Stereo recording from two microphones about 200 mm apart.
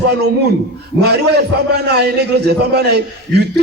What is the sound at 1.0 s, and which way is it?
A man's voice, 55° right (ahead or behind).